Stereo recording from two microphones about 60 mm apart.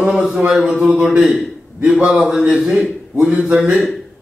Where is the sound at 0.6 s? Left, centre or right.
Centre.